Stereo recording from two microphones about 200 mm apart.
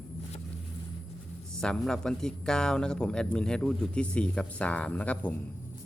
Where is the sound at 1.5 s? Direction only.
5° left (ahead or behind).